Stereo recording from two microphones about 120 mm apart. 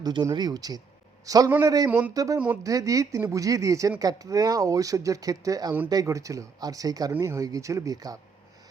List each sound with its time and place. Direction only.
0.0 s a man's voice: 35° right (ahead or behind)
1.9 s speech: 15° right (ahead or behind)
2.1 s speech: 30° right (ahead or behind)